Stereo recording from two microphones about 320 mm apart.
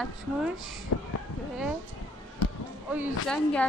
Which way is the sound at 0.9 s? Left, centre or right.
Left.